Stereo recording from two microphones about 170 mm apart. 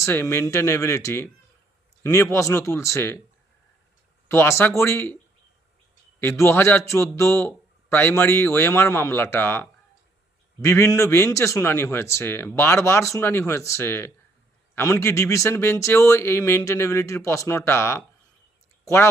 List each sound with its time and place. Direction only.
0.0 s a man's voice: 15° left (ahead or behind)
4.3 s a man's voice: 15° left (ahead or behind)
6.1 s a man's voice: 15° left (ahead or behind)